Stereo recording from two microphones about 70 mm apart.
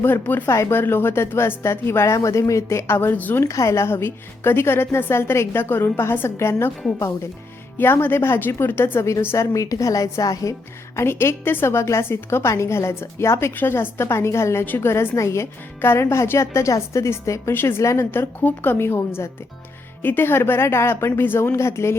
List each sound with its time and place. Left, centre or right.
0.0 s speech: left
0.4 s a woman's voice: left
3.4 s a woman's voice: left
7.8 s a woman's voice: left
9.5 s a woman's voice: left
10.9 s a woman's voice: left
17.5 s a woman's voice: left
21.5 s a woman's voice: left